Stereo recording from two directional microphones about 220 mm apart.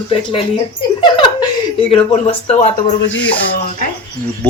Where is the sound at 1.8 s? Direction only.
25° left (ahead or behind).